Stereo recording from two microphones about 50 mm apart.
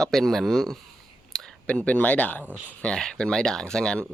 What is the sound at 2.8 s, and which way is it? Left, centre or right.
Speech, centre.